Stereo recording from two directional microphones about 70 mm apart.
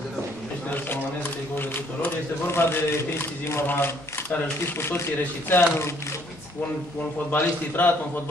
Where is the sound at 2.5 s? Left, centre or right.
Left.